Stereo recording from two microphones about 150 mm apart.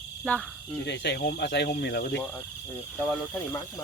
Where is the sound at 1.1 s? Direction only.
85° left.